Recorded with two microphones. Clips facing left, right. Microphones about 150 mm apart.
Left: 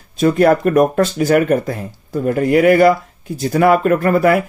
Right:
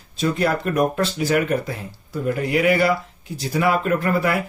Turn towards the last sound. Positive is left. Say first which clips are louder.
# left 7 dB
turn(degrees=50)  # may be behind; listen again after turning